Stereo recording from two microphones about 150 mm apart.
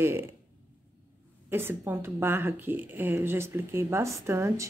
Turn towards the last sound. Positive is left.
turn(degrees=-15)  # may be behind; listen again after turning